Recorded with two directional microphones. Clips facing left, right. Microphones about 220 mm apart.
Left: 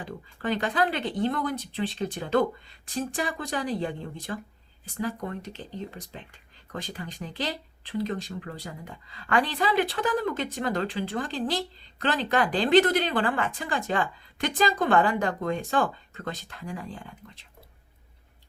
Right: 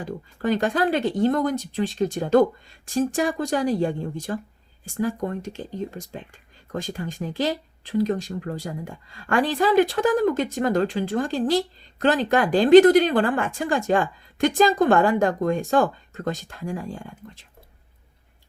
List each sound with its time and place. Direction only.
0.0 s speech: 45° right (ahead or behind)